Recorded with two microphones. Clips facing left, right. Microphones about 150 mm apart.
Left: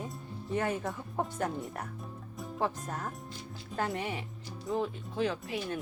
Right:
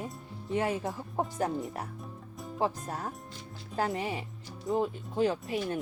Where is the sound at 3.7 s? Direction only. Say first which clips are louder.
Right 2 dB; 30° right (ahead or behind).